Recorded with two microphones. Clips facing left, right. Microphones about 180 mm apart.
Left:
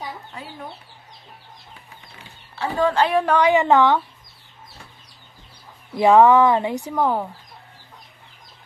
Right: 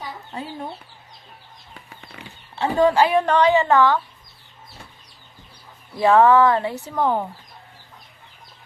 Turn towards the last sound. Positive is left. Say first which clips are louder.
# even
turn(degrees=5)  # may be behind; listen again after turning